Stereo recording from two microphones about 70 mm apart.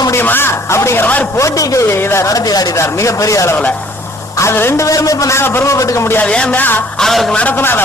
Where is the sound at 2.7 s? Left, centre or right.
Left.